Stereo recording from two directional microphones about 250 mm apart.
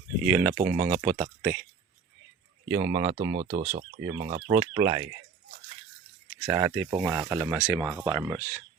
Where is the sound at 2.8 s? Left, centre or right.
Right.